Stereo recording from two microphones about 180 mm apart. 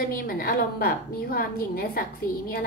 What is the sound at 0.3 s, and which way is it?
A woman's voice, 55° left (ahead or behind).